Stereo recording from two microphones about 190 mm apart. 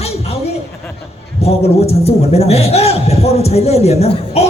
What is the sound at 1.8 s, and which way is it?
A man's voice, 35° left (ahead or behind).